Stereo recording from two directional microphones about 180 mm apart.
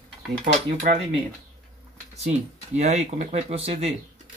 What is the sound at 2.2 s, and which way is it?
Speech, 40° right (ahead or behind).